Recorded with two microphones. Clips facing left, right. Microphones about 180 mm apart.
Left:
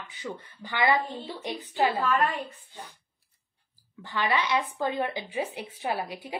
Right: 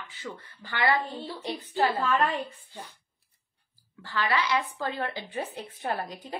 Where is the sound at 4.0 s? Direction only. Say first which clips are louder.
Even; 20° left (ahead or behind).